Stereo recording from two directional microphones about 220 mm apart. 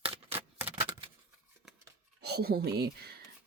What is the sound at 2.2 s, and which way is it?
Speech, 45° right (ahead or behind).